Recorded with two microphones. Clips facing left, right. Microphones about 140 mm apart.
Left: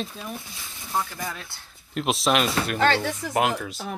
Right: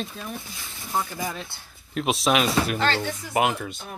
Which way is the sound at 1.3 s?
20° right (ahead or behind).